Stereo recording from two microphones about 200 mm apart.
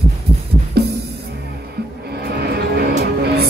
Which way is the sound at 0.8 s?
55° right (ahead or behind).